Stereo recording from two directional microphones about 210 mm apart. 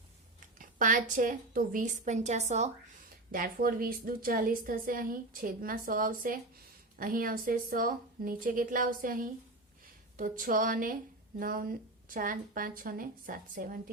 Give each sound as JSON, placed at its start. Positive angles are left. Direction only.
{"t": 0.3, "sound": "a woman's voice", "side_deg": -40}
{"t": 3.3, "sound": "a woman's voice", "side_deg": -45}